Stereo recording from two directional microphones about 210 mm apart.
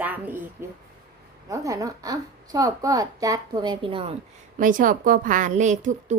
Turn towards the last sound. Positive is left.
turn(degrees=-35)  # may be behind; listen again after turning